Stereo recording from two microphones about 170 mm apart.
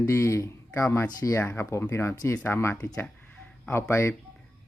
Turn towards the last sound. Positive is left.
turn(degrees=15)  # may be behind; listen again after turning